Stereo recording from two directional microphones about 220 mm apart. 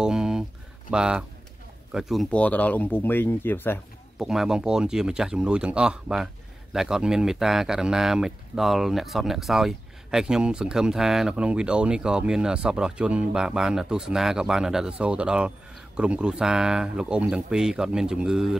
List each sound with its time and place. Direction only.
0.0 s a sound: 5° right (ahead or behind)
1.9 s speech: centre (ahead or behind)
4.2 s speech: centre (ahead or behind)